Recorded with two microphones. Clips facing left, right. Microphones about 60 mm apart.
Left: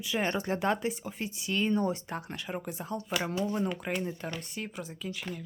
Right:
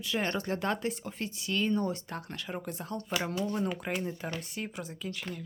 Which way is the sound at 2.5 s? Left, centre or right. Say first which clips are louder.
Left 1 dB; centre.